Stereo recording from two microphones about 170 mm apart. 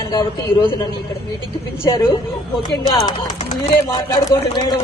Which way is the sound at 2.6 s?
25° left (ahead or behind).